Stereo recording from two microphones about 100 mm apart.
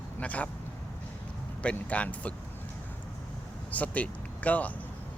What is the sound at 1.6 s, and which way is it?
Speech, 15° left (ahead or behind).